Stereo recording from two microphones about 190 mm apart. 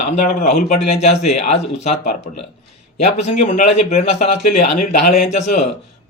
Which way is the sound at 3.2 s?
35° left (ahead or behind).